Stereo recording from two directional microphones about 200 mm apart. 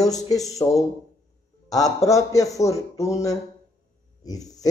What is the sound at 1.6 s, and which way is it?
A man's voice, 15° left (ahead or behind).